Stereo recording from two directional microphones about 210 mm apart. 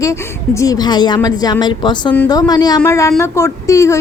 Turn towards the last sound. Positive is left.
turn(degrees=15)  # may be behind; listen again after turning